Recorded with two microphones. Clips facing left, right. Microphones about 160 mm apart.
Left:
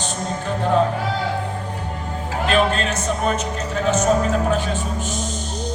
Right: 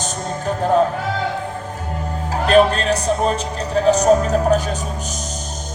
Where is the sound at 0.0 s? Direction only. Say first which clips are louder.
Right 2 dB; 40° right (ahead or behind).